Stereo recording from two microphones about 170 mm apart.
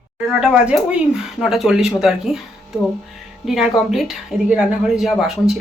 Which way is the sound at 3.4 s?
Centre (ahead or behind).